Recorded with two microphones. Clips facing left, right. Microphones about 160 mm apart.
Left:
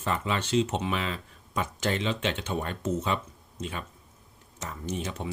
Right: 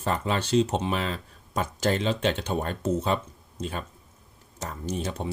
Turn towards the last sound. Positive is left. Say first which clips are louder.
# right 3 dB
turn(degrees=-35)  # may be behind; listen again after turning